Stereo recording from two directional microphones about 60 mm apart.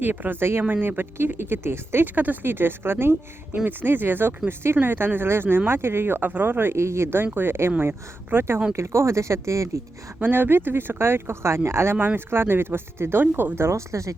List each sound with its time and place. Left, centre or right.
0.0 s speech: right
2.1 s speech: right
6.7 s speech: right
8.7 s speech: right
10.2 s speech: right
11.9 s speech: right
13.7 s speech: right